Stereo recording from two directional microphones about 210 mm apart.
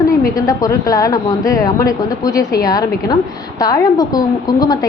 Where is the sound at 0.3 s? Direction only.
15° left (ahead or behind).